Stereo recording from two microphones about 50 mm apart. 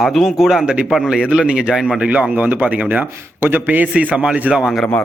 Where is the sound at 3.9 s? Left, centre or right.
Right.